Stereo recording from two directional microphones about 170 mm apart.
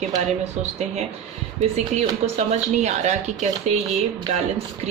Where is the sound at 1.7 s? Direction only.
40° right (ahead or behind).